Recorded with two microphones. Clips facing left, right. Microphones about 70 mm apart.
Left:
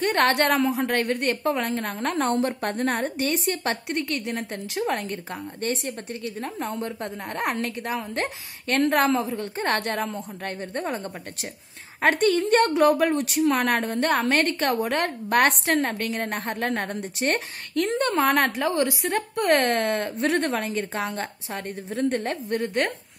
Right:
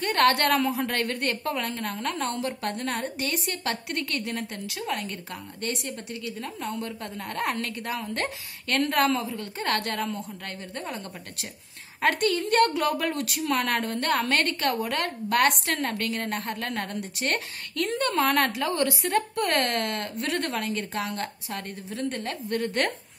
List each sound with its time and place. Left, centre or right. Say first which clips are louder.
0.0 s a woman's voice: left 1 dB; left
12.0 s a woman's voice: left 4 dB; left